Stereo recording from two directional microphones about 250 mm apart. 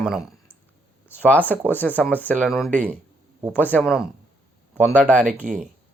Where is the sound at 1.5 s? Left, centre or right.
Centre.